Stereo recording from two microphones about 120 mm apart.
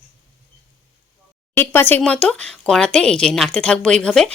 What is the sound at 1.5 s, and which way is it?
Speech, 20° left (ahead or behind).